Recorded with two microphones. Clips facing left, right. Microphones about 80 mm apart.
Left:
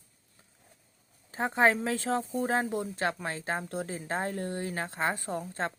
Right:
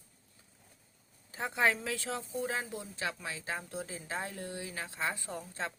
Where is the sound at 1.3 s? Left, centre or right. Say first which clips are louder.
Left 5 dB; left.